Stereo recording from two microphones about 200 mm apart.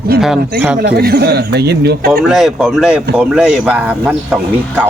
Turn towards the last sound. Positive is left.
turn(degrees=-5)  # may be behind; listen again after turning